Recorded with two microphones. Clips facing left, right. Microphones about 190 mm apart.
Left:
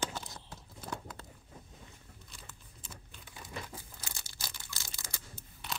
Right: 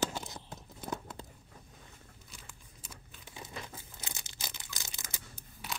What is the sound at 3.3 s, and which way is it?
Tearing, 20° right (ahead or behind).